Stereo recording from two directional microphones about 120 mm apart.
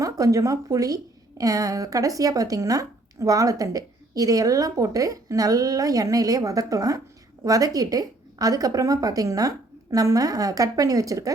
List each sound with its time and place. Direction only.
0.0 s a woman's voice: 30° right (ahead or behind)